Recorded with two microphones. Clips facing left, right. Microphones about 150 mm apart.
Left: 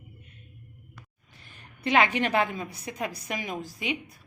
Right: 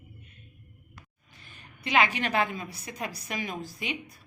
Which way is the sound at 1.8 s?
25° left (ahead or behind).